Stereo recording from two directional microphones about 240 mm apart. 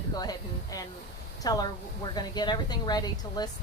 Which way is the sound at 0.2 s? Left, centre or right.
Centre.